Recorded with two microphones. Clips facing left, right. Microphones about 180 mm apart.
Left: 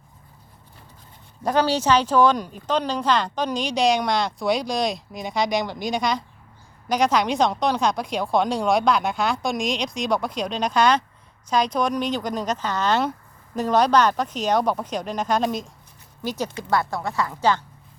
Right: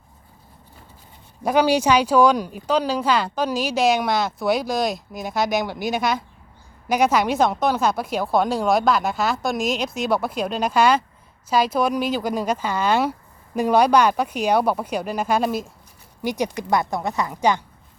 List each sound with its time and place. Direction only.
1.5 s speech: 10° right (ahead or behind)